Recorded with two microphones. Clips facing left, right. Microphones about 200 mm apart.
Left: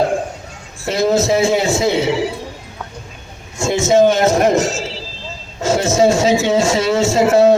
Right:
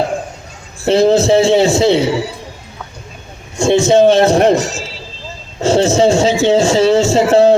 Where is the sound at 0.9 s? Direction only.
30° right (ahead or behind).